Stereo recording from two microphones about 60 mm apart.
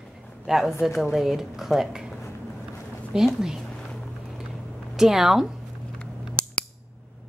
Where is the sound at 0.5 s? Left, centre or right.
Centre.